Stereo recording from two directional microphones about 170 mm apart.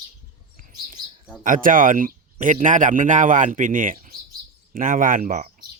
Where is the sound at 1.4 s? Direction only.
50° right (ahead or behind).